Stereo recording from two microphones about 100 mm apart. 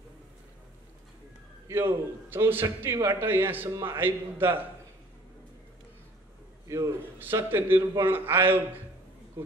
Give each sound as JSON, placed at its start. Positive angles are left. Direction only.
{"t": 1.7, "sound": "a man's voice", "side_deg": -20}
{"t": 6.7, "sound": "a man's voice", "side_deg": -25}